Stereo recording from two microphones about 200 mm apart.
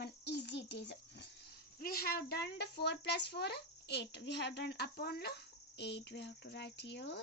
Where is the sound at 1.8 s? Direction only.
50° left (ahead or behind).